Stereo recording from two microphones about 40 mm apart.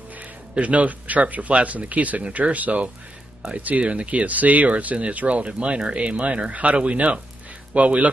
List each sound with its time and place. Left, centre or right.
0.1 s speech: right
5.5 s speech: right